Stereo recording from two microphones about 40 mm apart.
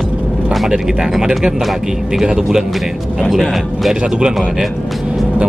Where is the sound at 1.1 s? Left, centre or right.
Centre.